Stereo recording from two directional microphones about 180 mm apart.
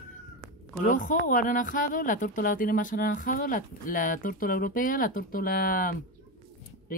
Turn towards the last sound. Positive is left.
turn(degrees=50)  # may be behind; listen again after turning